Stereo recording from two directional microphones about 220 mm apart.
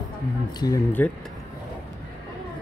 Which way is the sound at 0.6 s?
10° left (ahead or behind).